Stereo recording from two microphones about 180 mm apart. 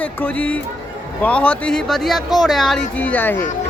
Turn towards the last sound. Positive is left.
turn(degrees=10)  # may be behind; listen again after turning